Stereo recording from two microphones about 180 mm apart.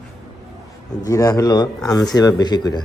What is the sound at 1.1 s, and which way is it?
Speech, 20° left (ahead or behind).